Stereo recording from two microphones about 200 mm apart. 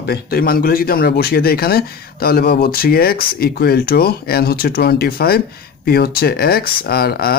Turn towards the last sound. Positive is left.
turn(degrees=50)  # may be behind; listen again after turning